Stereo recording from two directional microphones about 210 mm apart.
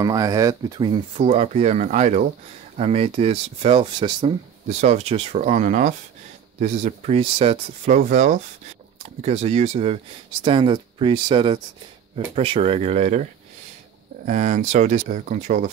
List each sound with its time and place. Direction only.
0.0 s speech: 15° right (ahead or behind)
4.6 s speech: 30° right (ahead or behind)